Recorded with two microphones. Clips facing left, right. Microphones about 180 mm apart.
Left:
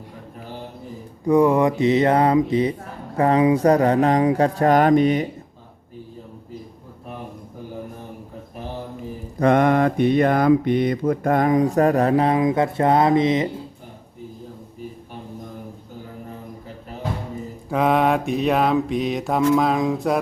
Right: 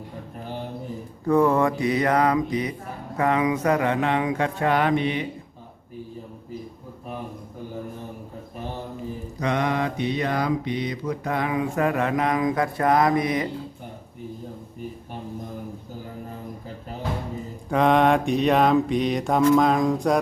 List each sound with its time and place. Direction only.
1.2 s speech: 15° left (ahead or behind)
3.2 s mantra: 35° left (ahead or behind)
9.4 s mantra: 55° left (ahead or behind); by 13.5 s 25° left (ahead or behind)
17.7 s mantra: 5° left (ahead or behind)